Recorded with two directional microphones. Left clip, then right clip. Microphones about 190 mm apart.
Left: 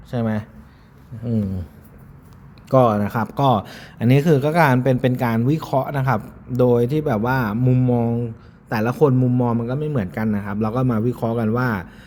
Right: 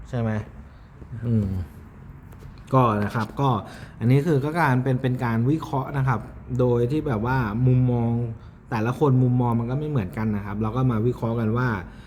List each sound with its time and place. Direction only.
0.1 s a man's voice: 25° left (ahead or behind)
2.6 s a man's voice: 30° left (ahead or behind)